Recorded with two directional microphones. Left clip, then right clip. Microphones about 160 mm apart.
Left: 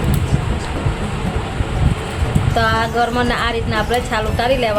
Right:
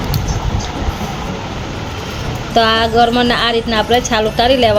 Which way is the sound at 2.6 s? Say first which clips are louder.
Right 6 dB; 40° right (ahead or behind).